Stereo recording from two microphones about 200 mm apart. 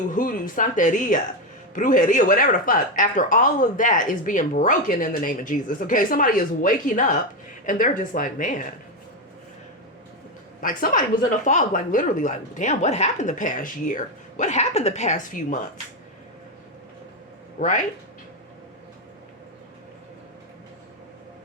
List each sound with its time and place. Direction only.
0.1 s speech: 45° left (ahead or behind)
10.6 s speech: 45° left (ahead or behind)
17.6 s speech: 40° left (ahead or behind)